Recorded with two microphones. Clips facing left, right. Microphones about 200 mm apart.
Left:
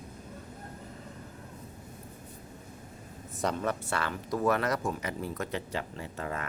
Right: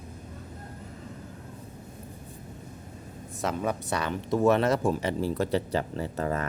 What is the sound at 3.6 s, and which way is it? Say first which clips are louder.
Speech: right 3 dB; 15° right (ahead or behind).